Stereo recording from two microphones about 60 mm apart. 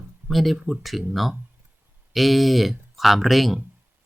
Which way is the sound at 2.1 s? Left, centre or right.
Centre.